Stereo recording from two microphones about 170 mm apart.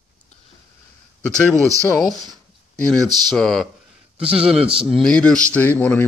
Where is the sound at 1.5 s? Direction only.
20° right (ahead or behind).